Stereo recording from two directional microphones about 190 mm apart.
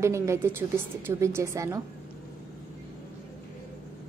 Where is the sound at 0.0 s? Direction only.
15° right (ahead or behind).